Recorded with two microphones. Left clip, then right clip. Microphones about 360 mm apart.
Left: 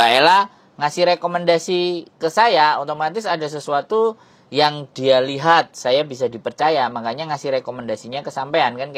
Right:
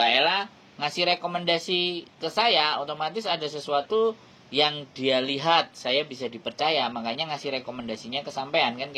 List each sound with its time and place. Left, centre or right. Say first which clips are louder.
0.0 s speech: left 9 dB; left